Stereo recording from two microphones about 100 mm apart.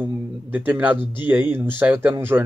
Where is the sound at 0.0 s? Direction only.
20° right (ahead or behind).